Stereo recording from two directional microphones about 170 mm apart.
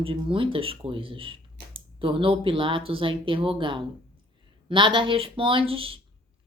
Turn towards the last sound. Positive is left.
turn(degrees=-35)  # may be behind; listen again after turning